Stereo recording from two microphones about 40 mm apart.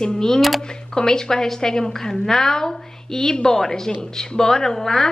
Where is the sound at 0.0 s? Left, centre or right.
Centre.